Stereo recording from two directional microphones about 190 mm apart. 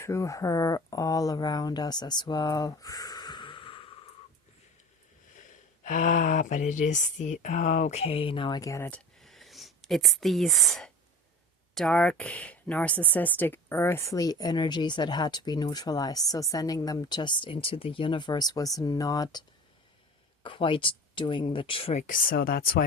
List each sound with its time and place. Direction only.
0.0 s speech: 15° left (ahead or behind)
5.4 s speech: 40° left (ahead or behind); by 9.0 s 15° left (ahead or behind)
9.2 s a sound: centre (ahead or behind)
11.7 s speech: 5° left (ahead or behind); by 22.0 s 30° left (ahead or behind)
22.0 s speech: 45° left (ahead or behind)